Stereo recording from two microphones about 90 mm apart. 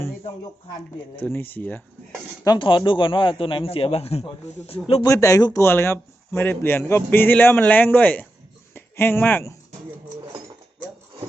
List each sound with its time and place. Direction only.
1.2 s a man's voice: 20° left (ahead or behind)
2.6 s a man's voice: 65° left (ahead or behind); by 5.0 s 90° left
5.0 s speech: 35° left (ahead or behind)
5.5 s a man's voice: 25° left (ahead or behind)
8.7 s a sound: 25° left (ahead or behind)